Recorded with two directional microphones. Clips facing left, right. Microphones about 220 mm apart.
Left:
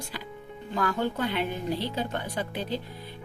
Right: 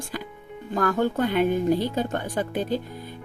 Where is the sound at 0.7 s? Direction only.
45° right (ahead or behind).